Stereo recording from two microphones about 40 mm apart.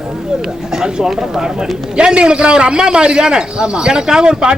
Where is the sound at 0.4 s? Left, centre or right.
Centre.